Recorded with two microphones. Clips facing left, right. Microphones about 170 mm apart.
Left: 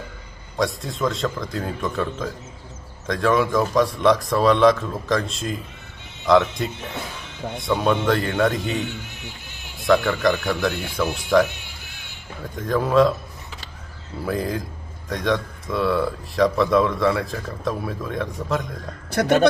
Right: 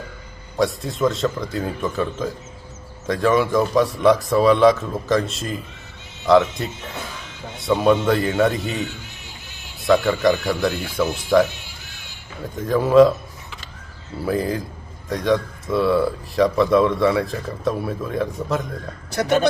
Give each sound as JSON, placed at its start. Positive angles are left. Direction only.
{"t": 0.5, "sound": "speech", "side_deg": 0}
{"t": 7.7, "sound": "speech", "side_deg": -5}
{"t": 12.5, "sound": "speech", "side_deg": 0}
{"t": 14.3, "sound": "speech", "side_deg": 0}
{"t": 19.1, "sound": "a man's voice", "side_deg": 55}